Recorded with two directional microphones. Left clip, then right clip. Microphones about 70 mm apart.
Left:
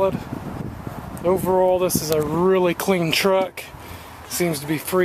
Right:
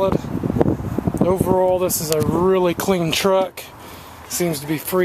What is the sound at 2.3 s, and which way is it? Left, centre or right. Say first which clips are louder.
Speech: right 2 dB; right.